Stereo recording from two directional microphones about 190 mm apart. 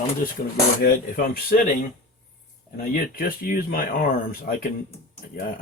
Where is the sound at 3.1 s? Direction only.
50° left (ahead or behind).